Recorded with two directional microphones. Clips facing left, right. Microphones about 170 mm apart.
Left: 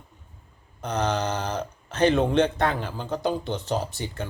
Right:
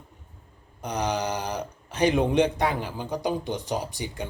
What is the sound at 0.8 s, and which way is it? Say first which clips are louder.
A man's voice: left 2 dB; 10° right (ahead or behind).